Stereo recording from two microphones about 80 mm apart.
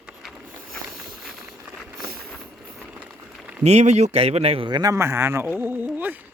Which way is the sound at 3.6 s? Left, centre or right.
Right.